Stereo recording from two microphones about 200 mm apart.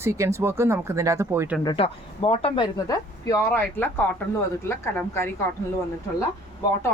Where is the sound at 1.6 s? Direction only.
25° left (ahead or behind).